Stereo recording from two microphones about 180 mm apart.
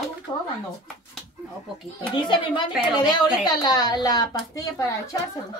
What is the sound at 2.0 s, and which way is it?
Speech, 25° left (ahead or behind).